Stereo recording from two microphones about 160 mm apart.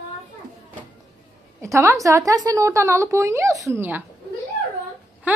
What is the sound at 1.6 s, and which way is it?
A woman's voice, 15° right (ahead or behind).